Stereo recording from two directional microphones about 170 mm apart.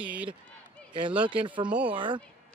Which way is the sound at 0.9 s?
30° right (ahead or behind).